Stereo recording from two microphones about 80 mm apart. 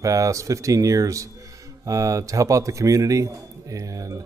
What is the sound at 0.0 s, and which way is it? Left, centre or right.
A man's voice, right.